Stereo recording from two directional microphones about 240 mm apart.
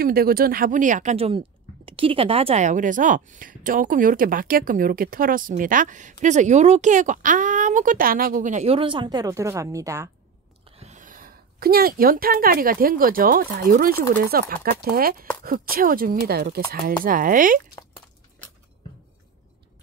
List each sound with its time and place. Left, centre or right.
0.0 s a woman's voice: right; by 10.0 s centre
10.6 s a woman's voice: right